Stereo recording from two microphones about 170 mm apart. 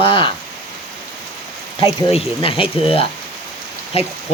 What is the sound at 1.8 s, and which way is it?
Speech, 30° left (ahead or behind).